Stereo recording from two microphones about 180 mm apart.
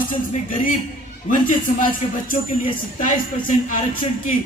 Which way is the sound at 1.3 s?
50° left (ahead or behind).